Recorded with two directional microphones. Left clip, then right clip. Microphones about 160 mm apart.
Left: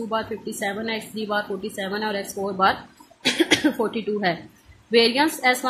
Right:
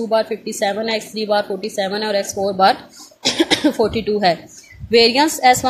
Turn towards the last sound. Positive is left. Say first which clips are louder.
# right 7 dB
turn(degrees=-35)  # may be behind; listen again after turning